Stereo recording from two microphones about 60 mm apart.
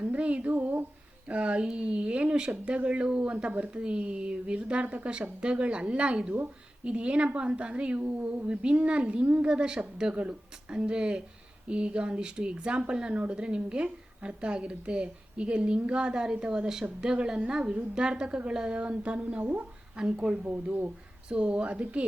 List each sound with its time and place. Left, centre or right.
0.0 s a woman's voice: right
18.8 s a woman's voice: right